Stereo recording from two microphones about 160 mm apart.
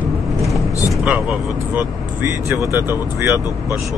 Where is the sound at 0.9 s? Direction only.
5° right (ahead or behind).